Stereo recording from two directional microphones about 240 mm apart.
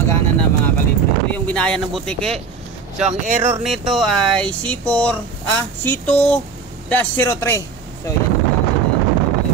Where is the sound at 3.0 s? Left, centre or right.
Right.